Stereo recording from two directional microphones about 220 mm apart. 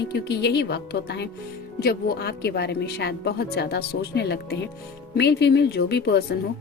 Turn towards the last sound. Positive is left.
turn(degrees=50)  # may be behind; listen again after turning